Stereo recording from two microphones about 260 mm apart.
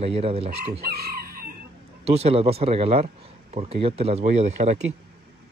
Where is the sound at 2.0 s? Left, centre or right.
Right.